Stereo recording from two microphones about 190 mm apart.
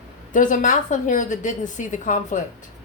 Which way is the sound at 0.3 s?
40° left (ahead or behind).